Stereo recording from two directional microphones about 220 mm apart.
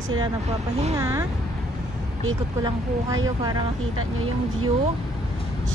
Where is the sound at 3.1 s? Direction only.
15° right (ahead or behind).